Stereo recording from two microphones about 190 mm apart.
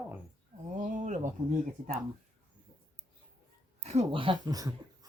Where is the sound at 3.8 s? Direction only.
35° right (ahead or behind); by 5.1 s 20° right (ahead or behind).